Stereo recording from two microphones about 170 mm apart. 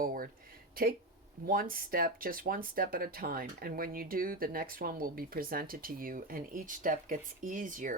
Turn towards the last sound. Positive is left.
turn(degrees=-50)  # may be behind; listen again after turning